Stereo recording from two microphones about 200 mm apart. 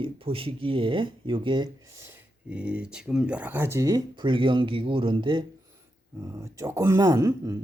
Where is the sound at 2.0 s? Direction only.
10° right (ahead or behind); by 5.4 s 25° right (ahead or behind).